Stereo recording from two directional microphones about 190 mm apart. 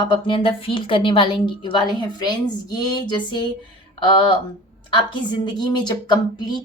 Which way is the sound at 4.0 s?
25° left (ahead or behind).